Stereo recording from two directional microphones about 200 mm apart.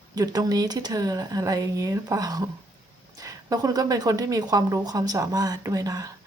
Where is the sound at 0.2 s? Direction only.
20° right (ahead or behind).